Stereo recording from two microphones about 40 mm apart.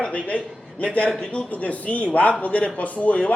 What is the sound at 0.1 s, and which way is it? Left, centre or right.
A man's voice, left.